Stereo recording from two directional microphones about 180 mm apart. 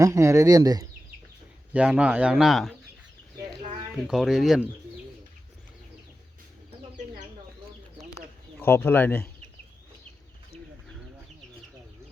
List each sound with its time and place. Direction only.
0.0 s speech: 20° right (ahead or behind)
1.7 s speech: 5° right (ahead or behind)
3.9 s speech: centre (ahead or behind)
8.5 s speech: 10° left (ahead or behind)